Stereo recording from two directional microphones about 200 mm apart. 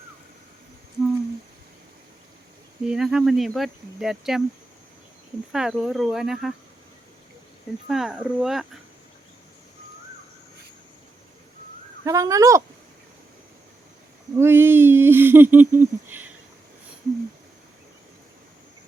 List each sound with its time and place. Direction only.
2.9 s speech: 5° right (ahead or behind)
5.5 s speech: 5° right (ahead or behind)
7.9 s speech: 5° right (ahead or behind)
12.0 s speech: 15° right (ahead or behind)
14.3 s a sound: 10° right (ahead or behind)